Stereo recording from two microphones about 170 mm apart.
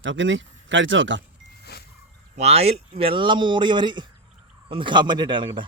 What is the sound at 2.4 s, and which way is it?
Speech, 40° right (ahead or behind).